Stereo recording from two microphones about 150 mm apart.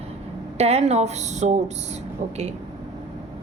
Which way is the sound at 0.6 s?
45° right (ahead or behind).